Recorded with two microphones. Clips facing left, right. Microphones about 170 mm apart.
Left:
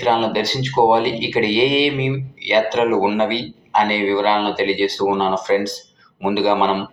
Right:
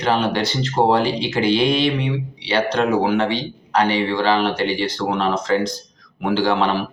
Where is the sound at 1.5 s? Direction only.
20° left (ahead or behind).